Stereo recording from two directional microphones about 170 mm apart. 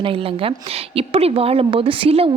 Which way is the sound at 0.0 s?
30° right (ahead or behind).